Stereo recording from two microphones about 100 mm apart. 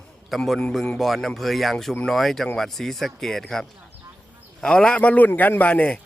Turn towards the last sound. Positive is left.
turn(degrees=10)  # may be behind; listen again after turning